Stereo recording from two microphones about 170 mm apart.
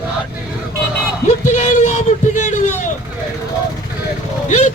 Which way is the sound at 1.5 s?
45° left (ahead or behind).